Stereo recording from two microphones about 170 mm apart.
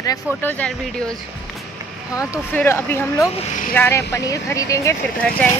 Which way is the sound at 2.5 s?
10° left (ahead or behind).